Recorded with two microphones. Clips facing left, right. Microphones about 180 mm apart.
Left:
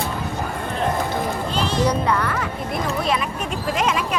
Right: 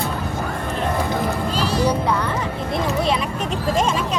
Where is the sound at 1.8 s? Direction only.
10° right (ahead or behind); by 4.0 s 30° right (ahead or behind).